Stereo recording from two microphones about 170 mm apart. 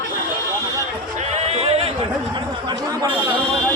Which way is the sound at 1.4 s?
35° right (ahead or behind).